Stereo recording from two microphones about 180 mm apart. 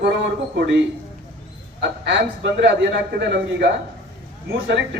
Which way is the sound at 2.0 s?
90° right.